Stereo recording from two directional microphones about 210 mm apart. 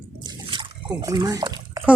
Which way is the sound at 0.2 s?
20° right (ahead or behind).